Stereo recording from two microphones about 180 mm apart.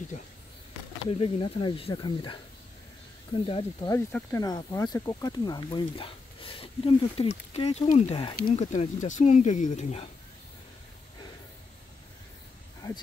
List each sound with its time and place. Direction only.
1.1 s speech: 30° left (ahead or behind)
3.9 s speech: 15° left (ahead or behind); by 8.4 s 30° left (ahead or behind)
8.4 s speech: 50° left (ahead or behind)